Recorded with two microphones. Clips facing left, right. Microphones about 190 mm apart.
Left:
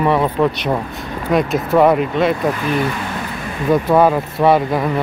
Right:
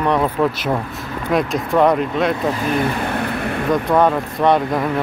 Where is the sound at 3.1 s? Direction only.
60° right (ahead or behind).